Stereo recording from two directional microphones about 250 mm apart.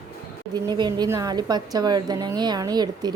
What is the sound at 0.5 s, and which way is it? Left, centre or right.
A woman's voice, centre.